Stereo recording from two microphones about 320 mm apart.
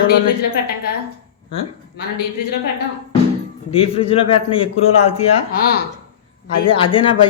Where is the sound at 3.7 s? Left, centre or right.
Centre.